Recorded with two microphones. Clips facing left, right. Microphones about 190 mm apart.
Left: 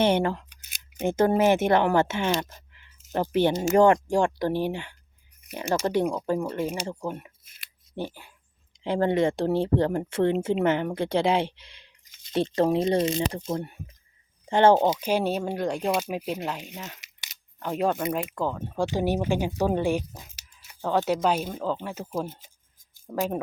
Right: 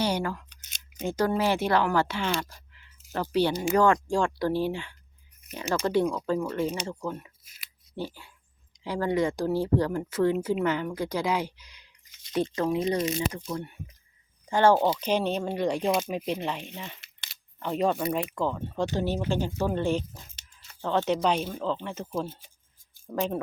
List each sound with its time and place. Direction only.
0.0 s speech: 25° left (ahead or behind)
2.4 s keys jangling: 20° left (ahead or behind)
3.1 s speech: 20° left (ahead or behind)
15.0 s speech: 10° left (ahead or behind)